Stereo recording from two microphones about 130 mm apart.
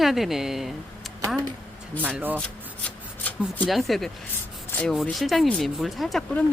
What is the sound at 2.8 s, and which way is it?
Rub, 10° left (ahead or behind).